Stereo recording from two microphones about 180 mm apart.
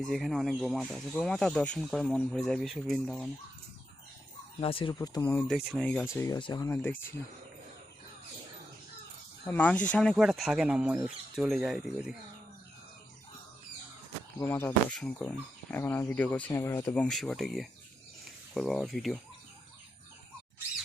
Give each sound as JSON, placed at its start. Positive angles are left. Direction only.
{"t": 0.0, "sound": "speech", "side_deg": 0}
{"t": 4.6, "sound": "speech", "side_deg": 30}
{"t": 5.5, "sound": "speech", "side_deg": -5}
{"t": 6.2, "sound": "speech", "side_deg": 20}
{"t": 9.5, "sound": "speech", "side_deg": 10}
{"t": 14.3, "sound": "speech", "side_deg": 15}